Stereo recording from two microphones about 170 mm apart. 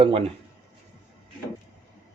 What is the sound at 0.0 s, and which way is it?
Speech, 35° right (ahead or behind).